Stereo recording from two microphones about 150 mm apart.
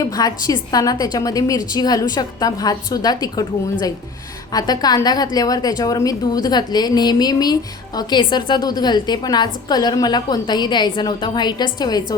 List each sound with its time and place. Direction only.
0.0 s a woman's voice: 25° left (ahead or behind)